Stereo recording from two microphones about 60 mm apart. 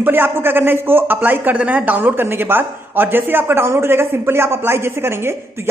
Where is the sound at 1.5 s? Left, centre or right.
Right.